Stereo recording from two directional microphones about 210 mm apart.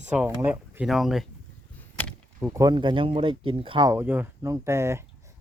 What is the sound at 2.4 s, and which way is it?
Speech, 10° right (ahead or behind).